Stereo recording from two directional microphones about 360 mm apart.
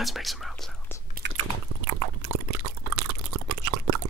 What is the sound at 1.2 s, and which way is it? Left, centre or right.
Biting, right.